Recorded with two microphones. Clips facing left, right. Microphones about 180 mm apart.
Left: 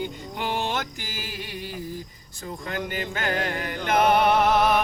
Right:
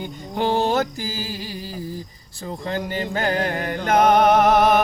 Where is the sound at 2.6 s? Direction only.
35° right (ahead or behind).